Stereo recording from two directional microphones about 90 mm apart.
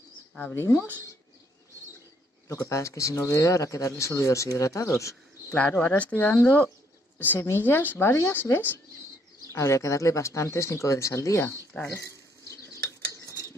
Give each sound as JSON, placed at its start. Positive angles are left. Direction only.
{"t": 0.4, "sound": "speech", "side_deg": 30}
{"t": 2.4, "sound": "speech", "side_deg": 35}
{"t": 5.5, "sound": "speech", "side_deg": 15}